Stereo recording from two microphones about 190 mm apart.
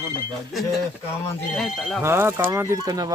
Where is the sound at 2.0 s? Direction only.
15° right (ahead or behind).